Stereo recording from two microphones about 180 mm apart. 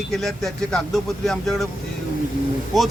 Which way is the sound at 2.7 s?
Centre (ahead or behind).